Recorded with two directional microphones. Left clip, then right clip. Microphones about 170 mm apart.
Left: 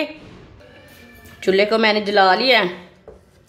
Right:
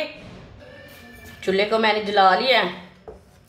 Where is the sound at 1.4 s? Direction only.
55° left (ahead or behind).